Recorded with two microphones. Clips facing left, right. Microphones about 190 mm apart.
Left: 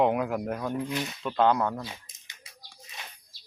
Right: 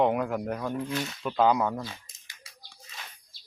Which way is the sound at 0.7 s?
15° left (ahead or behind).